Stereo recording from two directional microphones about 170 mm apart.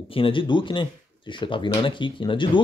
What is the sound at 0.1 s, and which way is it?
Speech, 30° left (ahead or behind).